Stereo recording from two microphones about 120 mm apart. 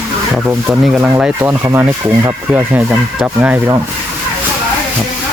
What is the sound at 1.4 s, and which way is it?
Speech, 25° right (ahead or behind).